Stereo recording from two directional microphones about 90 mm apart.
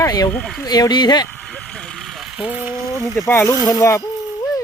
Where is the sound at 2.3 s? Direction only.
15° right (ahead or behind).